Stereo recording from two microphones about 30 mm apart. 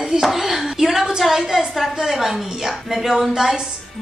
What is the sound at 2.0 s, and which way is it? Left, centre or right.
A woman's voice, centre.